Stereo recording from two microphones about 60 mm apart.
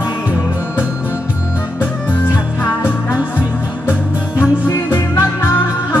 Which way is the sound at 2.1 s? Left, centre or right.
Left.